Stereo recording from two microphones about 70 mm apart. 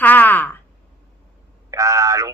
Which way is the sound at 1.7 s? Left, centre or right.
Right.